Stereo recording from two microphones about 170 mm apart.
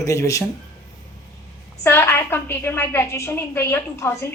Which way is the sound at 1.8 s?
15° left (ahead or behind).